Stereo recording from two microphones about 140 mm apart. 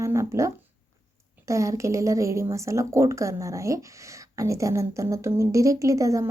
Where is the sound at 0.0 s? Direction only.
20° right (ahead or behind).